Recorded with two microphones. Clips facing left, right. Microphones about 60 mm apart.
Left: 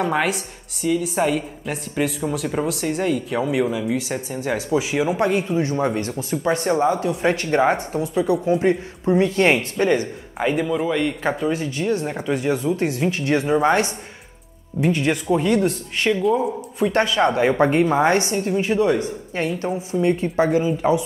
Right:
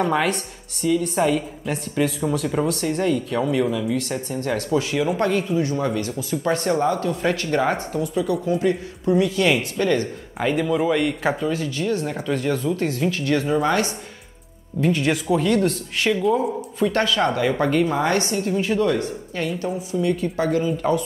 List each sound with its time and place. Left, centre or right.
0.0 s a woman's voice: centre
5.6 s a woman's voice: left
6.4 s a woman's voice: centre; by 9.7 s left
9.8 s a woman's voice: centre
11.4 s speech: left
14.9 s a woman's voice: centre
16.8 s speech: left
19.4 s speech: left